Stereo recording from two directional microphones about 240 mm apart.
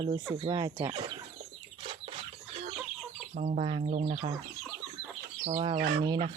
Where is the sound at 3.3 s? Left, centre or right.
Right.